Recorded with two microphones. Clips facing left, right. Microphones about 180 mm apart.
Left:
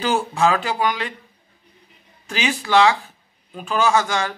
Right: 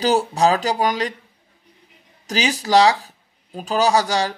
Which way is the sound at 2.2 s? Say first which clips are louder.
Right 2 dB; 40° right (ahead or behind).